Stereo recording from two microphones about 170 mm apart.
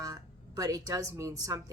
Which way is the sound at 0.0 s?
20° right (ahead or behind).